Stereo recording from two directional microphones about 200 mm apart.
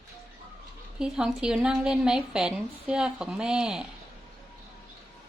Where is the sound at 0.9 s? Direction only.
5° right (ahead or behind).